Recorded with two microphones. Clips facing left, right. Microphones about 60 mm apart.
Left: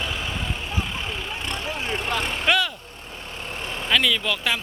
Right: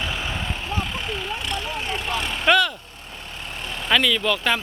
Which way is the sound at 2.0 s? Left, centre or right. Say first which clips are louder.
Left 2 dB; left.